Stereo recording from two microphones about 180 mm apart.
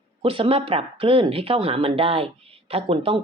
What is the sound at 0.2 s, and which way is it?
Speech, 30° right (ahead or behind).